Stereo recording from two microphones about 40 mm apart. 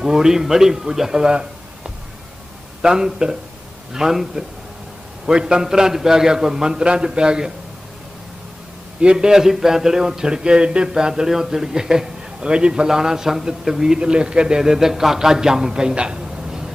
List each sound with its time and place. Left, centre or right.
0.0 s a man's voice: centre
5.2 s a man's voice: centre
9.0 s a man's voice: right